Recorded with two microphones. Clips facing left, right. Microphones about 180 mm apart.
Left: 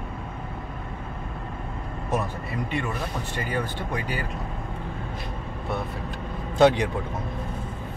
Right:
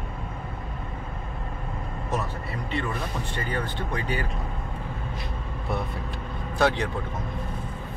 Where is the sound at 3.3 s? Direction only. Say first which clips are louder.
Left 2 dB; 10° left (ahead or behind).